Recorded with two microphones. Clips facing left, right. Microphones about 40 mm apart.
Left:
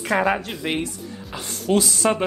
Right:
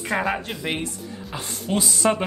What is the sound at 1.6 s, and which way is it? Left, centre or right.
Speech, right.